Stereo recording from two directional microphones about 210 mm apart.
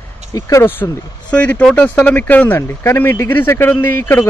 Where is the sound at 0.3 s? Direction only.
15° left (ahead or behind).